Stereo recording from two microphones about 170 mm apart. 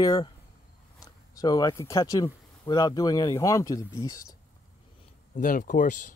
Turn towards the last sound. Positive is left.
turn(degrees=50)  # may be behind; listen again after turning